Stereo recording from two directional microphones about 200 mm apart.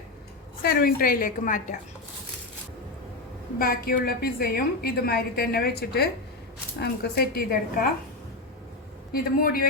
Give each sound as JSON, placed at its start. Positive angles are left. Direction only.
{"t": 0.6, "sound": "a woman's voice", "side_deg": 50}
{"t": 3.6, "sound": "a woman's voice", "side_deg": 45}
{"t": 9.1, "sound": "a woman's voice", "side_deg": 45}